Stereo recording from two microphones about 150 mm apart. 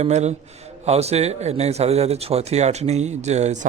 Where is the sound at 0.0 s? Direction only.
50° right (ahead or behind).